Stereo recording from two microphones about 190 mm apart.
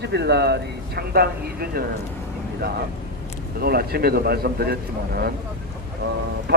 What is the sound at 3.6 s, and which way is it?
Speech, 55° right (ahead or behind).